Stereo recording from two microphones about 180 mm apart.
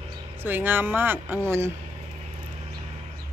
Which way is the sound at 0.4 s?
10° right (ahead or behind).